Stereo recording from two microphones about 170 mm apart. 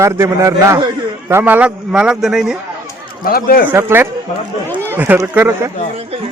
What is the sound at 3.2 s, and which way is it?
Speech, 60° left (ahead or behind).